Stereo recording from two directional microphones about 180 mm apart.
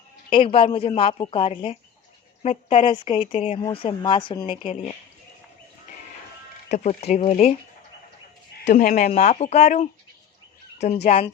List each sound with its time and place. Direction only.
0.3 s speech: 30° left (ahead or behind)
6.7 s speech: 40° left (ahead or behind)
8.6 s speech: 45° left (ahead or behind)